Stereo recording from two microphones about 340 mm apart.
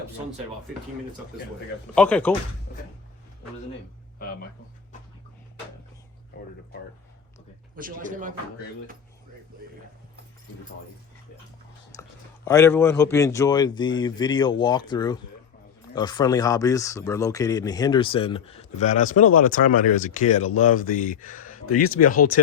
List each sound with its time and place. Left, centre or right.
2.0 s speech: centre
7.8 s a man's voice: right
11.9 s a sound: centre
12.5 s speech: centre; by 22.3 s left